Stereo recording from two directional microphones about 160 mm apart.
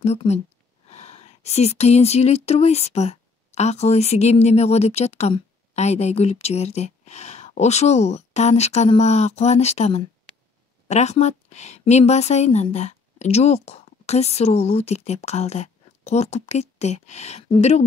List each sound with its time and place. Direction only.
0.0 s a woman's voice: 40° left (ahead or behind)